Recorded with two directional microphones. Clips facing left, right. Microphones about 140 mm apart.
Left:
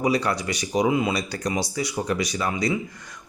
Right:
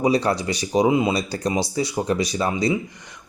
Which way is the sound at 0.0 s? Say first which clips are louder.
Right 3 dB; 30° right (ahead or behind).